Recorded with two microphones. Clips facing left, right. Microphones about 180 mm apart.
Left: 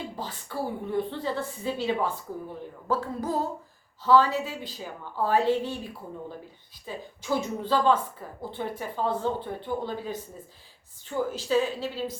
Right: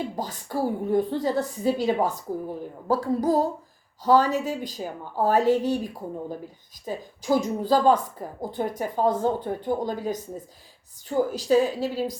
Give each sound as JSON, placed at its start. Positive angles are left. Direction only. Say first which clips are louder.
{"t": 0.2, "sound": "a woman's voice", "louder": "right 5 dB", "side_deg": -40}